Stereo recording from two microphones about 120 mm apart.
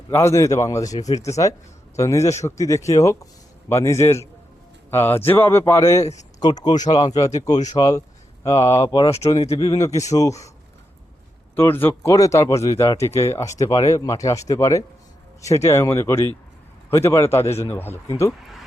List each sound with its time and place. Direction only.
0.1 s speech: 20° left (ahead or behind); by 9.0 s 40° left (ahead or behind)
9.5 s speech: 30° left (ahead or behind)
11.5 s speech: 20° left (ahead or behind)